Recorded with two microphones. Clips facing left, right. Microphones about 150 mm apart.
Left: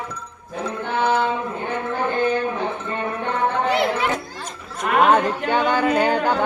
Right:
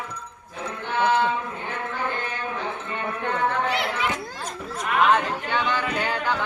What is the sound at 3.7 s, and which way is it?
Chatter, 40° left (ahead or behind).